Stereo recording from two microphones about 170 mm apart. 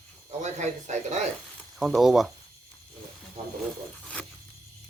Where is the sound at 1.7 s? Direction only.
Centre (ahead or behind).